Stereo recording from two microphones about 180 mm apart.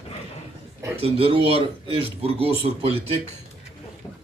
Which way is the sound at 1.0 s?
30° right (ahead or behind).